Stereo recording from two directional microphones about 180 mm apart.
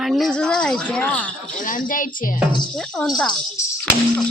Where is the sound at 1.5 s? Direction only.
50° left (ahead or behind).